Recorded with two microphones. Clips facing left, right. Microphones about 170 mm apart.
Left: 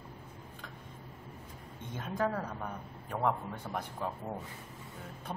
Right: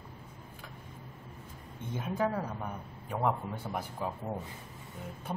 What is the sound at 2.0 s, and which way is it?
A man's voice, 10° right (ahead or behind).